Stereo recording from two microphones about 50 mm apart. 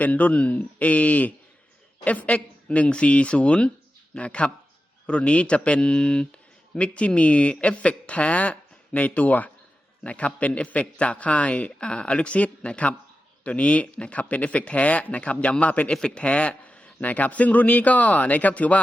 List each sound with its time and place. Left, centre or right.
0.0 s a man's voice: left
15.9 s a man's voice: centre